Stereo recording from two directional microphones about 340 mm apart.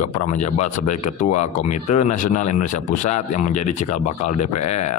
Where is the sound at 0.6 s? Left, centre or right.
Left.